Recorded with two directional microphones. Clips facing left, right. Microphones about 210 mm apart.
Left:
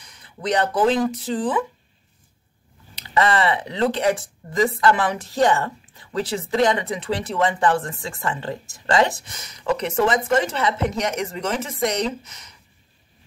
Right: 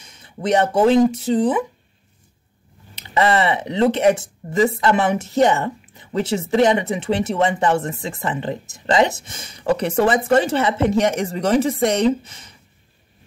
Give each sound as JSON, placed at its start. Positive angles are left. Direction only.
{"t": 0.0, "sound": "speech", "side_deg": -25}
{"t": 3.2, "sound": "speech", "side_deg": -25}